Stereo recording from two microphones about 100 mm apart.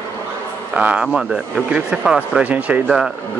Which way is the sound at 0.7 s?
10° right (ahead or behind).